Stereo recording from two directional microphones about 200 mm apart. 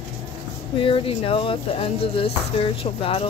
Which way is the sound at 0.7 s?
25° left (ahead or behind).